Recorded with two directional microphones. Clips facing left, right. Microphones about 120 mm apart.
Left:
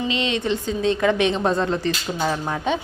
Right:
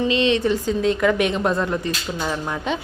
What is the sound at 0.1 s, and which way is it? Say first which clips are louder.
Speech: right 4 dB; 20° left (ahead or behind).